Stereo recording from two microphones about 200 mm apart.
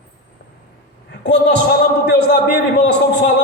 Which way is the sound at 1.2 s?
60° left (ahead or behind).